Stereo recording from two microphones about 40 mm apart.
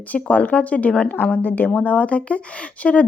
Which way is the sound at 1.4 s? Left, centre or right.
Left.